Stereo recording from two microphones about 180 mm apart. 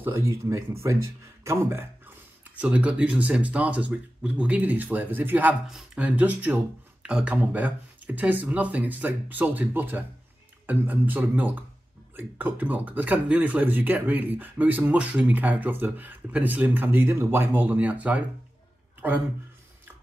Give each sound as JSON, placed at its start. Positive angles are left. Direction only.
{"t": 0.0, "sound": "speech", "side_deg": -15}